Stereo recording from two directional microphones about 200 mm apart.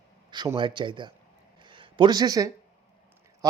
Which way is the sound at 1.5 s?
25° right (ahead or behind).